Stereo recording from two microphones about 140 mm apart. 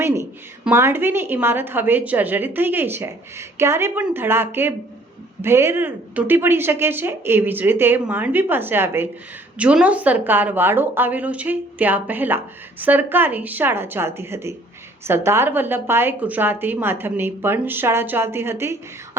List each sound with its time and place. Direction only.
0.6 s a woman's voice: 15° right (ahead or behind)